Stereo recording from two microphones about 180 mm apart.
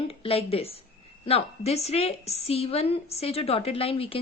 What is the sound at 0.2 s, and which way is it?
A woman's voice, 30° left (ahead or behind).